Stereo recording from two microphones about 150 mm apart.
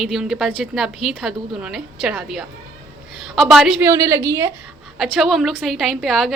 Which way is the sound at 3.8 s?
20° right (ahead or behind).